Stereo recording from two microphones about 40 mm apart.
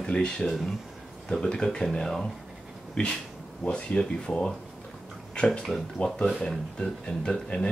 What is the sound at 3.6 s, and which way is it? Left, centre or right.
Speech, left.